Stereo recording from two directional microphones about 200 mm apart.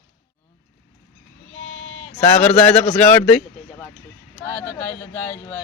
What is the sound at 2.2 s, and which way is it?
Speech, 5° left (ahead or behind).